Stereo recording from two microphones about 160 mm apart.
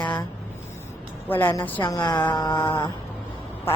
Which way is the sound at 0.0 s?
30° left (ahead or behind).